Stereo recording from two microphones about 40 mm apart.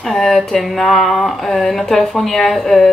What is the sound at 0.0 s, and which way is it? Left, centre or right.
Speech, centre.